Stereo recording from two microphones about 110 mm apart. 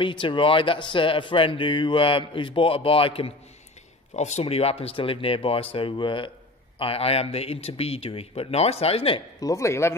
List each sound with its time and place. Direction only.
0.0 s speech: 50° left (ahead or behind)
4.1 s speech: 90° left; by 6.3 s 50° left (ahead or behind)
6.8 s speech: 65° left (ahead or behind)
9.4 s speech: 30° left (ahead or behind)